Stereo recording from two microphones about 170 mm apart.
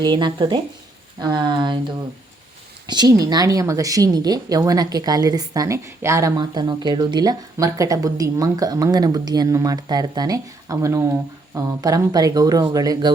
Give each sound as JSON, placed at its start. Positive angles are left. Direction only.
{"t": 0.0, "sound": "speech", "side_deg": -25}
{"t": 2.8, "sound": "speech", "side_deg": -25}